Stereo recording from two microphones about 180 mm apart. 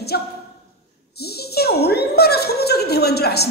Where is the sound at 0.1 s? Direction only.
60° left (ahead or behind).